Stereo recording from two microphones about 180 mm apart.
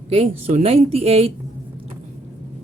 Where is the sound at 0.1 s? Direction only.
35° right (ahead or behind).